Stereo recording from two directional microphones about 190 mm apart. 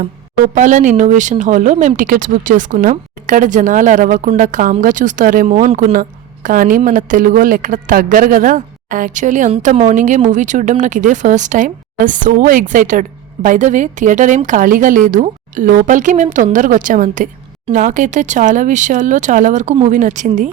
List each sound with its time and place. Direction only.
0.5 s speech: 40° right (ahead or behind)